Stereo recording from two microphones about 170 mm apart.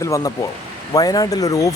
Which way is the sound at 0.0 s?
20° left (ahead or behind).